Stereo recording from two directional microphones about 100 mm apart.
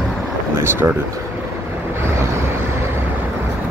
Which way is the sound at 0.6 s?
20° right (ahead or behind).